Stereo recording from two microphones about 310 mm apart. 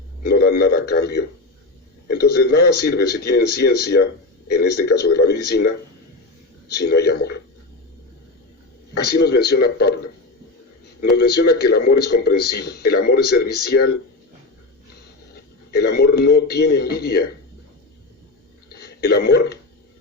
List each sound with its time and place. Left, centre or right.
0.2 s a man's voice: left
9.0 s speech: left
11.2 s speech: left
15.7 s speech: left
18.7 s a sound: left